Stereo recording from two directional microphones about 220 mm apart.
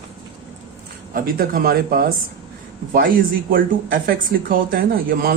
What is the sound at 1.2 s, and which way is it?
Speech, 40° right (ahead or behind).